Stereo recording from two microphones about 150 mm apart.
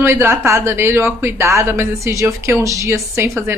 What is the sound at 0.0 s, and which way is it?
Speech, 15° right (ahead or behind).